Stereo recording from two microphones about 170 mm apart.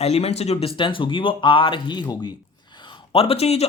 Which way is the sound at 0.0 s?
40° left (ahead or behind).